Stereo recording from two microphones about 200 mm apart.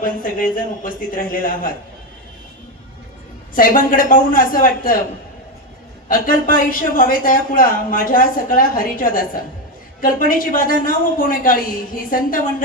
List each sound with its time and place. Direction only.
0.0 s a man's voice: 45° left (ahead or behind)
3.5 s a man's voice: 45° left (ahead or behind)
6.1 s a man's voice: 45° left (ahead or behind)